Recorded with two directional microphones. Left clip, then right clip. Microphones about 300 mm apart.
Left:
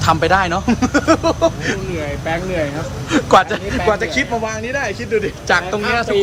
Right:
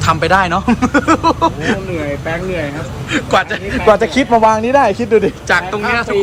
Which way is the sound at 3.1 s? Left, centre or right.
Centre.